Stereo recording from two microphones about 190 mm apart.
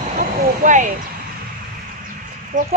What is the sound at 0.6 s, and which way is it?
Speech, 40° right (ahead or behind).